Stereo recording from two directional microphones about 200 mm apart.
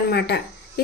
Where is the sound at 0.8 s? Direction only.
50° left (ahead or behind).